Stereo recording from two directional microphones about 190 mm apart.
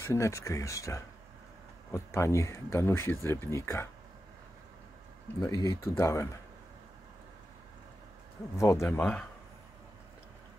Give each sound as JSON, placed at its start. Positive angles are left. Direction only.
{"t": 0.0, "sound": "speech", "side_deg": 15}
{"t": 5.4, "sound": "speech", "side_deg": 20}
{"t": 8.5, "sound": "speech", "side_deg": 15}